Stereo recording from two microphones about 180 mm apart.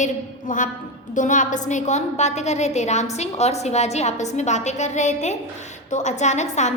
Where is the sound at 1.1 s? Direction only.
45° left (ahead or behind).